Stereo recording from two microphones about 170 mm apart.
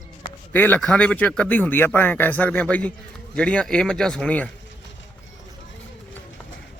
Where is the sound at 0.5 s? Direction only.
10° left (ahead or behind).